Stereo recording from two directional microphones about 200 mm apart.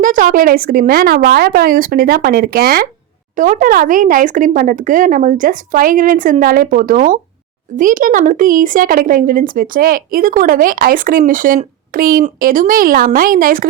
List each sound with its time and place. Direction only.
0.0 s speech: 40° right (ahead or behind)